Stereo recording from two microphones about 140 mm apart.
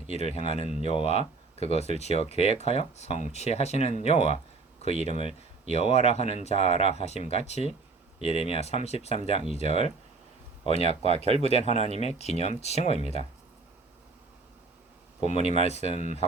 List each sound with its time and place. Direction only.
0.1 s speech: 50° left (ahead or behind)
15.2 s speech: 50° left (ahead or behind)